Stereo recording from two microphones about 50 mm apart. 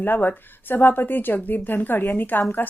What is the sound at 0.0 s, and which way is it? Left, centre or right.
A woman's voice, left.